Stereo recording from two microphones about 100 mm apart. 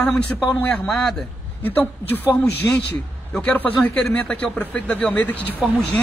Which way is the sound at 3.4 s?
15° left (ahead or behind).